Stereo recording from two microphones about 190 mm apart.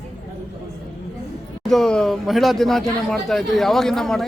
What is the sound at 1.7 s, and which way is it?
Speech, 5° left (ahead or behind).